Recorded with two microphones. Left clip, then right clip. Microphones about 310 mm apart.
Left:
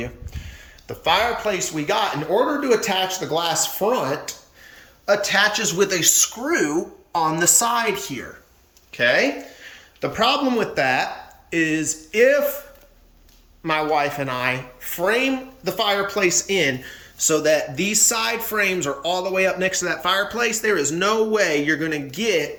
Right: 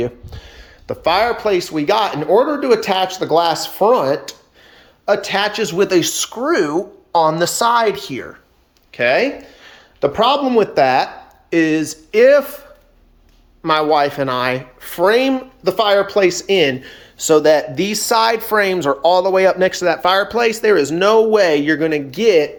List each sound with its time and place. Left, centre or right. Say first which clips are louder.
0.0 s speech: right 10 dB; centre
8.9 s speech: right 3 dB; centre
13.6 s speech: right 6 dB; centre